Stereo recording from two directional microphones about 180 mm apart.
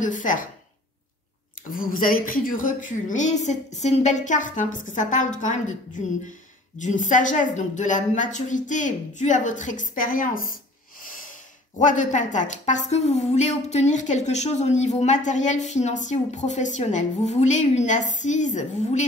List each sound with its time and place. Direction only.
0.0 s a woman's voice: 45° left (ahead or behind)
1.7 s a woman's voice: 50° left (ahead or behind)
11.8 s speech: 45° left (ahead or behind)